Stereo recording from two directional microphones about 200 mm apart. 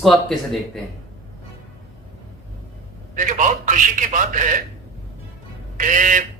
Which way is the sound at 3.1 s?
40° right (ahead or behind).